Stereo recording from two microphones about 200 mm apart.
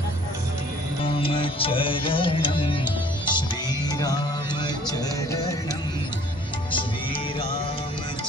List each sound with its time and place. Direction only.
1.0 s music: 25° left (ahead or behind)